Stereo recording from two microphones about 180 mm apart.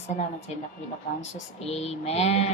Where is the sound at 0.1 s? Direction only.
40° left (ahead or behind).